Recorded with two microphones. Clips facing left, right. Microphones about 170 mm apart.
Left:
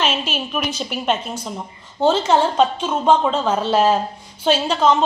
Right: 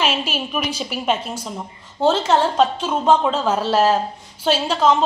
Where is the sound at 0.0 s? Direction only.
5° right (ahead or behind).